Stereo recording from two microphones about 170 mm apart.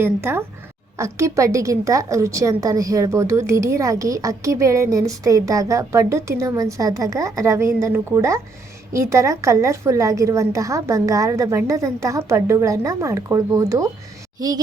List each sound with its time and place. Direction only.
0.0 s a woman's voice: 15° right (ahead or behind)